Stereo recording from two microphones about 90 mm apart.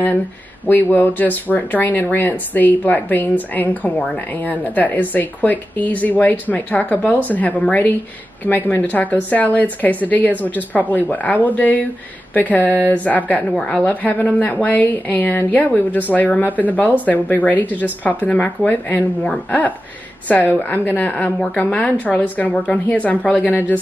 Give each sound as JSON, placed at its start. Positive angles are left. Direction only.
{"t": 0.7, "sound": "a woman's voice", "side_deg": 20}